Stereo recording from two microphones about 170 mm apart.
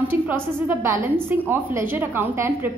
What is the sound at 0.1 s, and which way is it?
A woman's voice, 10° right (ahead or behind).